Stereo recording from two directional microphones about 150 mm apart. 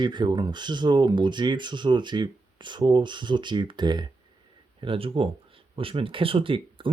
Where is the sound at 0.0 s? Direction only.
30° right (ahead or behind).